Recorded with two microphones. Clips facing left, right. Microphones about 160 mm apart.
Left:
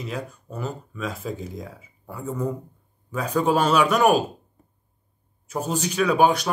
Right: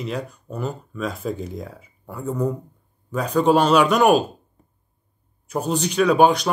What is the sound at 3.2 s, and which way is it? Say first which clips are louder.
Speech: right 4 dB; 30° right (ahead or behind).